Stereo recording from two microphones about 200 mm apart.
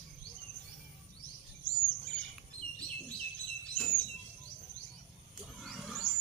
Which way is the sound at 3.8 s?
10° left (ahead or behind).